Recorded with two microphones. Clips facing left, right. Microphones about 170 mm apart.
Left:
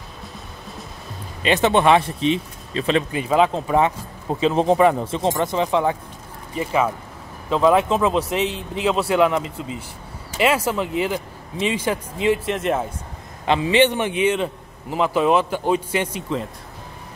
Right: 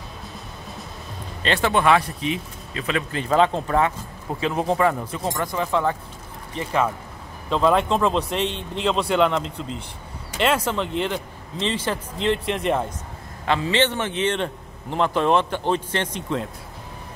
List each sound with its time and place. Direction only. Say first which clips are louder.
1.4 s speech: left 4 dB; 20° left (ahead or behind)
3.1 s a man's voice: left 1 dB; 10° left (ahead or behind)
3.7 s speech: left 3 dB; 20° left (ahead or behind)
6.5 s a man's voice: left 2 dB; 5° left (ahead or behind)
13.5 s a man's voice: left 4 dB; 15° left (ahead or behind)